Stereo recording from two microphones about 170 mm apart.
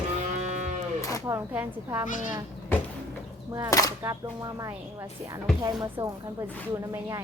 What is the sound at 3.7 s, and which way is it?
Speech, 20° left (ahead or behind).